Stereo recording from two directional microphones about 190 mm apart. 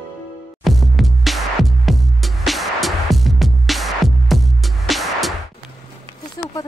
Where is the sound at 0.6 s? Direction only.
Centre (ahead or behind).